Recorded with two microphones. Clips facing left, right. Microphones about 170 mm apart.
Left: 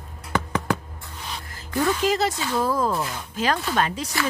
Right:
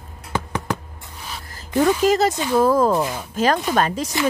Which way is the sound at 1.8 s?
45° right (ahead or behind).